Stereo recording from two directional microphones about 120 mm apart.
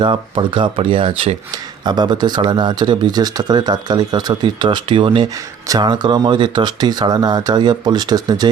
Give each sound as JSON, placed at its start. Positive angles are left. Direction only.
{"t": 0.0, "sound": "speech", "side_deg": -45}
{"t": 1.5, "sound": "speech", "side_deg": -35}